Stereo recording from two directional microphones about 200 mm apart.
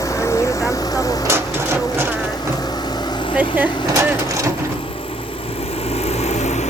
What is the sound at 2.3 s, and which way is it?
Vehicle, 20° left (ahead or behind).